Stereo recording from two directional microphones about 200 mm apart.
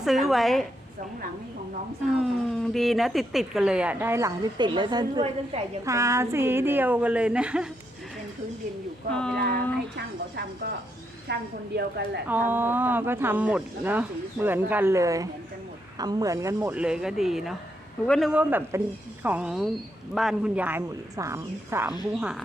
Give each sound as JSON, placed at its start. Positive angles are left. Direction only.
{"t": 0.0, "sound": "speech", "side_deg": 0}
{"t": 2.2, "sound": "speech", "side_deg": 0}
{"t": 9.1, "sound": "speech", "side_deg": 5}
{"t": 9.9, "sound": "a woman's voice", "side_deg": -50}
{"t": 12.3, "sound": "speech", "side_deg": -10}